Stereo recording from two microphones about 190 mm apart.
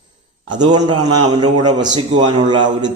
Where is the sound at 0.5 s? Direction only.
25° right (ahead or behind).